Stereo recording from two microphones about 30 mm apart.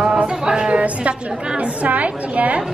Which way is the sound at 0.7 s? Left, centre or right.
Right.